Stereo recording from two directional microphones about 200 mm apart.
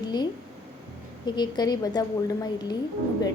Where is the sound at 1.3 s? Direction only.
20° left (ahead or behind).